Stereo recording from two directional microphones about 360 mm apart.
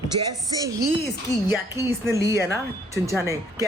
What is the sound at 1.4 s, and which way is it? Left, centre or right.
A man's voice, centre.